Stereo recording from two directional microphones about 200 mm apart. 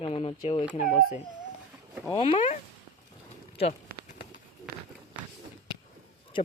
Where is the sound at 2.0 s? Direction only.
25° left (ahead or behind).